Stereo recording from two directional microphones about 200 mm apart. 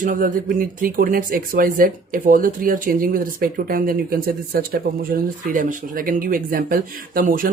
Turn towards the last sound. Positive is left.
turn(degrees=-45)  # may be behind; listen again after turning